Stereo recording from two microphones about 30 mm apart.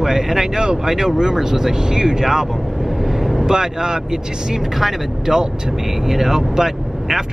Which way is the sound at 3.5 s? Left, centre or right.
Right.